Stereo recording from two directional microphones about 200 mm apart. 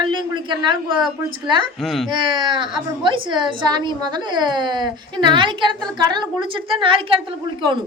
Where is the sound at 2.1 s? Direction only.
25° right (ahead or behind).